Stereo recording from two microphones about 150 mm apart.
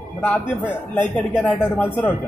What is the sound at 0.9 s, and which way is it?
Speech, 10° left (ahead or behind).